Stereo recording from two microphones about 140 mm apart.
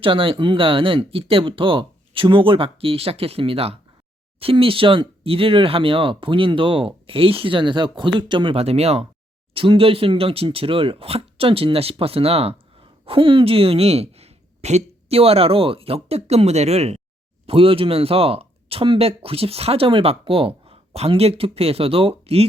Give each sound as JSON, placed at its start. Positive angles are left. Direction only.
{"t": 0.0, "sound": "speech", "side_deg": -40}